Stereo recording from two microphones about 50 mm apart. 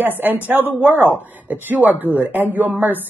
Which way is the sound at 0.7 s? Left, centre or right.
Right.